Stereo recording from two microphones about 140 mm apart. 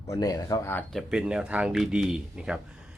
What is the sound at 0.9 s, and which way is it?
Speech, centre (ahead or behind).